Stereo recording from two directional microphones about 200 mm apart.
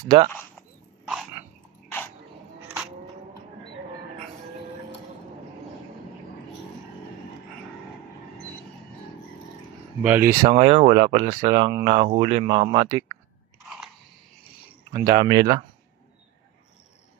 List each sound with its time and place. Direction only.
0.0 s speech: 20° right (ahead or behind)
1.0 s dog: 5° right (ahead or behind)
10.0 s speech: 10° right (ahead or behind)
10.5 s speech: 30° right (ahead or behind)
14.9 s speech: 20° right (ahead or behind)